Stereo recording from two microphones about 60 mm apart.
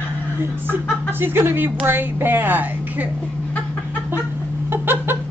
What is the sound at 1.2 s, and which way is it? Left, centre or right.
A woman's voice, right.